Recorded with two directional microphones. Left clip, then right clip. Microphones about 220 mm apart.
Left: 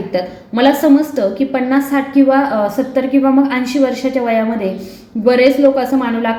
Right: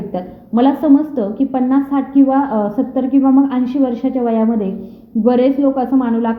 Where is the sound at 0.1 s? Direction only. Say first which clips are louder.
Left 3 dB; 25° right (ahead or behind).